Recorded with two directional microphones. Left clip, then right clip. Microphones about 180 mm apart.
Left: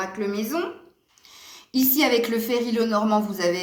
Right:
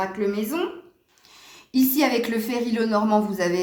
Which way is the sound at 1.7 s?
30° right (ahead or behind).